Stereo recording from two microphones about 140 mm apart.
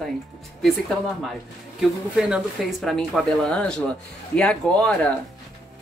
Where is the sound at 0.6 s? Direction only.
Centre (ahead or behind).